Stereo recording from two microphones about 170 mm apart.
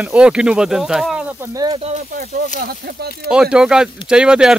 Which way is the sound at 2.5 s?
65° right (ahead or behind).